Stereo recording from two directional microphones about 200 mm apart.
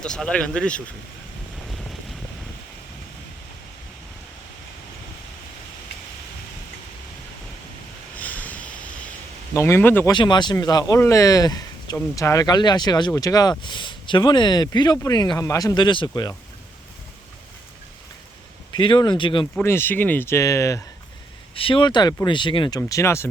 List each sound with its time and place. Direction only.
0.0 s speech: 5° left (ahead or behind)
1.6 s wind noise: centre (ahead or behind)
8.1 s vehicle: 10° left (ahead or behind)
9.6 s speech: 10° left (ahead or behind)
10.1 s speech: 20° left (ahead or behind)
18.7 s speech: 25° left (ahead or behind)
19.5 s speech: 10° left (ahead or behind)
21.5 s speech: 25° left (ahead or behind)